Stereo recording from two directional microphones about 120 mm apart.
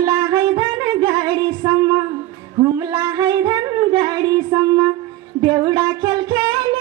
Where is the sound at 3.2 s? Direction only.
35° right (ahead or behind).